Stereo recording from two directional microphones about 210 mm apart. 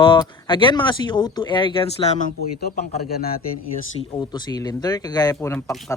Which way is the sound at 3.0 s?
50° left (ahead or behind).